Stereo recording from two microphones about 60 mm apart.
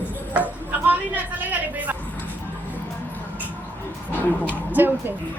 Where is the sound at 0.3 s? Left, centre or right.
Right.